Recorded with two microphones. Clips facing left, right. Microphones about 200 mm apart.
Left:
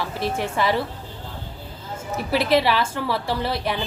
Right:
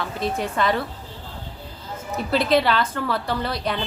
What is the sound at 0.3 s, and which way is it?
Speech, 10° left (ahead or behind).